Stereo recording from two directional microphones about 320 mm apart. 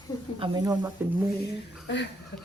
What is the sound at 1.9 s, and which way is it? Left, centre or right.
Speech, left.